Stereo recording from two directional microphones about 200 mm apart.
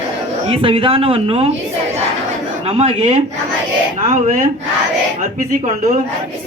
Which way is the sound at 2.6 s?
30° right (ahead or behind).